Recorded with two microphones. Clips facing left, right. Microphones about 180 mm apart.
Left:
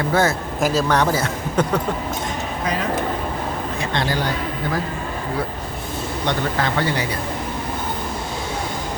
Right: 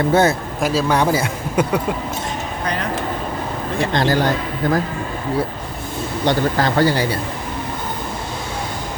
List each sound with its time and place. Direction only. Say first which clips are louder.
0.1 s a man's voice: right 3 dB; 20° right (ahead or behind)
0.6 s a man's voice: even; centre (ahead or behind)
0.9 s a man's voice: right 2 dB; 10° right (ahead or behind)
3.9 s speech: right 5 dB; 40° right (ahead or behind)
6.2 s speech: right 5 dB; 35° right (ahead or behind)